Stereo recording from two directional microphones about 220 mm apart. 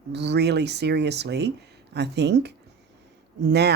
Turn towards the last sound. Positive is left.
turn(degrees=-50)  # may be behind; listen again after turning